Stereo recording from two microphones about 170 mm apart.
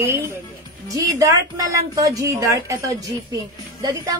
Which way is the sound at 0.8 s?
20° right (ahead or behind).